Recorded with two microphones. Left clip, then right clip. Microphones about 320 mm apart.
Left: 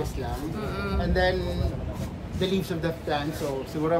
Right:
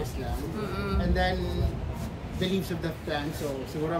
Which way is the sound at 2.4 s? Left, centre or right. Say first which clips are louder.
Left 4 dB; centre.